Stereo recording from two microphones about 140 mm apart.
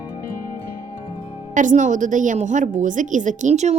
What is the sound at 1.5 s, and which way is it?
A woman's voice, 65° right (ahead or behind).